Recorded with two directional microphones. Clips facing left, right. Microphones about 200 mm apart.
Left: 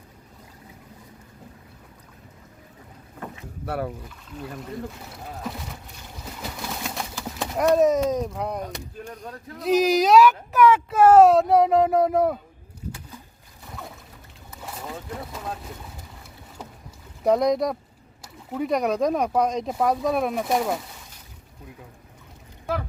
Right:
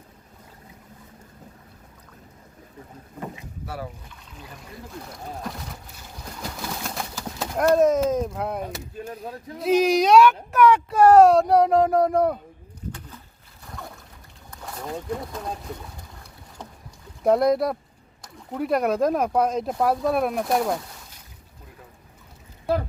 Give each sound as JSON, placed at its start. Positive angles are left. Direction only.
{"t": 3.7, "sound": "speech", "side_deg": 60}
{"t": 5.1, "sound": "speech", "side_deg": 0}
{"t": 13.7, "sound": "boat", "side_deg": 0}
{"t": 14.5, "sound": "speech", "side_deg": 5}
{"t": 17.2, "sound": "speech", "side_deg": 0}